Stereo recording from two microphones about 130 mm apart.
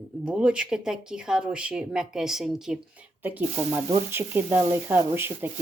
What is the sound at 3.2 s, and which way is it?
Speech, 15° right (ahead or behind).